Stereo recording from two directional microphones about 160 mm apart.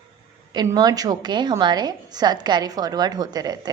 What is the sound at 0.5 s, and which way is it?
Speech, 25° right (ahead or behind).